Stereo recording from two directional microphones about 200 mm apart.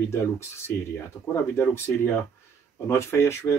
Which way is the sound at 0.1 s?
10° left (ahead or behind).